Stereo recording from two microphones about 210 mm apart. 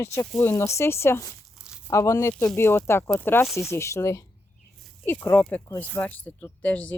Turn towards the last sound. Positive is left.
turn(degrees=5)  # may be behind; listen again after turning